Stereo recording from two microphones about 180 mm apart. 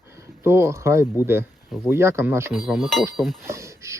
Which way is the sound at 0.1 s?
15° right (ahead or behind).